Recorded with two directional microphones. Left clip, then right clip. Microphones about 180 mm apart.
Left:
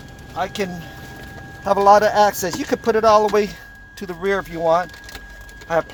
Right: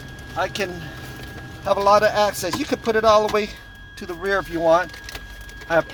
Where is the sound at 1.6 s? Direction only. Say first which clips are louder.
Left 3 dB; 50° left (ahead or behind).